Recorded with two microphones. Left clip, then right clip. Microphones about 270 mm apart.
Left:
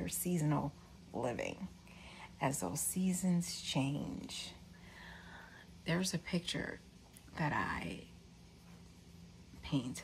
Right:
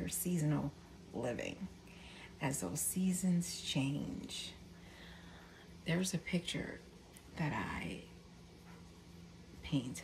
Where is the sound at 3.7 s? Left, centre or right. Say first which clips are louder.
Left 1 dB; left.